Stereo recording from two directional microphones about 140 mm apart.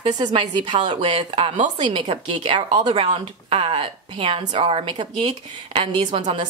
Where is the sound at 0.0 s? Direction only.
30° right (ahead or behind).